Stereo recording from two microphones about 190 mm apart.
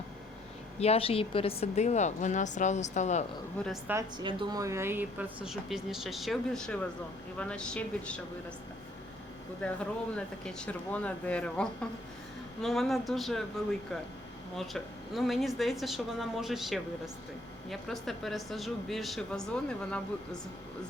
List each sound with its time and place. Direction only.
0.8 s a woman's voice: 30° left (ahead or behind)
3.6 s speech: 5° left (ahead or behind)
4.2 s speech: 25° right (ahead or behind); by 8.2 s 5° left (ahead or behind)
9.6 s speech: 5° left (ahead or behind)
14.5 s speech: centre (ahead or behind)